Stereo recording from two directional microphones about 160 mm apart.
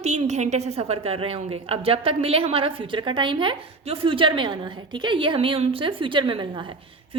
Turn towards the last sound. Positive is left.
turn(degrees=-30)  # may be behind; listen again after turning